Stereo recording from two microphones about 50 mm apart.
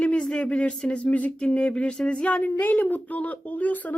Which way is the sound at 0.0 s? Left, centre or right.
Left.